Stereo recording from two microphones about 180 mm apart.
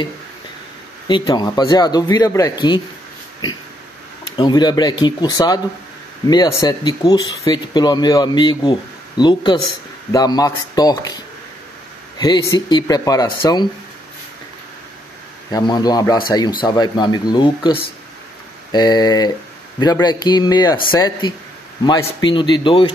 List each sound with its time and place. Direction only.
1.0 s speech: 25° left (ahead or behind)
4.4 s speech: 25° left (ahead or behind)
15.5 s speech: 20° left (ahead or behind)
21.8 s speech: 25° left (ahead or behind)